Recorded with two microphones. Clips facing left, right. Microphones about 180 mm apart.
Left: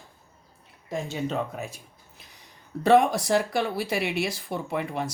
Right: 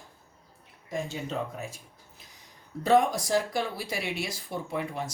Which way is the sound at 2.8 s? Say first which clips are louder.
Left 4 dB; 70° left (ahead or behind).